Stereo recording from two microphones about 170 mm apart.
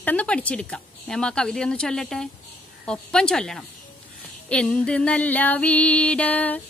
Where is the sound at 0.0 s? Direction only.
10° left (ahead or behind).